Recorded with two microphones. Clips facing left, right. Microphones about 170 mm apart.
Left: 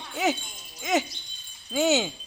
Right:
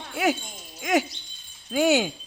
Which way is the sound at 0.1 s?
10° right (ahead or behind).